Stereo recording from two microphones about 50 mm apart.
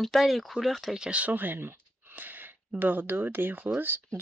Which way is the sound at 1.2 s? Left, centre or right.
Right.